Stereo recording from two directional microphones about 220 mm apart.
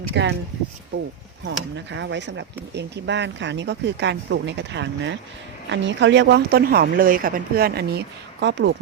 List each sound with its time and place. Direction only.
0.1 s speech: 55° right (ahead or behind)
1.5 s speech: 55° right (ahead or behind)